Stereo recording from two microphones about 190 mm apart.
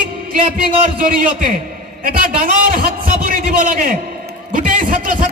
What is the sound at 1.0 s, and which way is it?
Speech, 45° right (ahead or behind).